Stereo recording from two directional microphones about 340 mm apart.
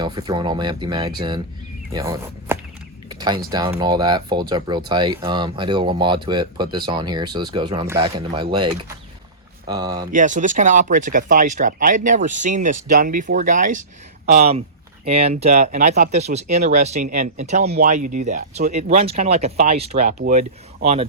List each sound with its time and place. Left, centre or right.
0.0 s speech: centre
3.1 s a sound: centre
3.5 s speech: centre
10.1 s speech: right